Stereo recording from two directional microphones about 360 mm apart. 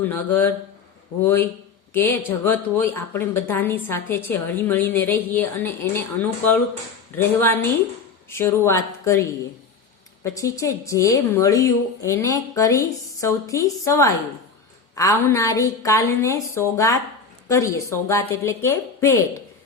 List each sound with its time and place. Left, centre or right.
0.0 s a woman's voice: centre
7.2 s a woman's voice: centre
10.2 s a woman's voice: centre